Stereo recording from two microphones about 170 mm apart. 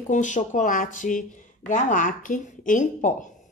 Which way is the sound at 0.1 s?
45° left (ahead or behind).